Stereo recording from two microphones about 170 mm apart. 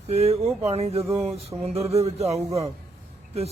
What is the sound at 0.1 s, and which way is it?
Speech, 40° right (ahead or behind).